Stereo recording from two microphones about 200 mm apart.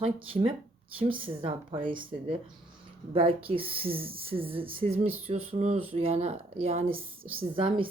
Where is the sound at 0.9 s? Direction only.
25° right (ahead or behind).